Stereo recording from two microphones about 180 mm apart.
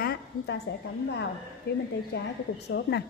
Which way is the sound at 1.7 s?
70° left (ahead or behind).